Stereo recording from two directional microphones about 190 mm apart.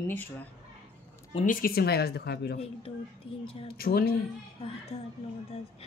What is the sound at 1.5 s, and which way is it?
Speech, 50° left (ahead or behind).